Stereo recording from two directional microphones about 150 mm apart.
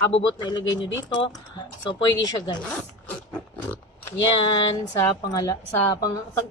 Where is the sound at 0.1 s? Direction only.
30° left (ahead or behind).